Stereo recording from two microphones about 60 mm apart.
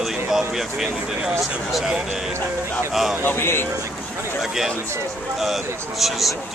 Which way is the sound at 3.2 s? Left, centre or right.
Left.